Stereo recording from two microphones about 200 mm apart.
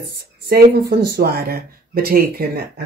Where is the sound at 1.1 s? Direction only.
50° right (ahead or behind).